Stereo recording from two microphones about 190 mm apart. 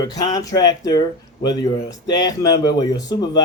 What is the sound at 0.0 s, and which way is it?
Speech, 20° left (ahead or behind).